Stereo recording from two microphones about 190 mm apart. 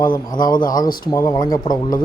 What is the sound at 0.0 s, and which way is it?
A man's voice, 20° left (ahead or behind).